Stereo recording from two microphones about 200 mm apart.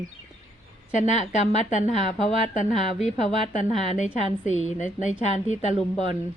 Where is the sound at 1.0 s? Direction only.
35° left (ahead or behind).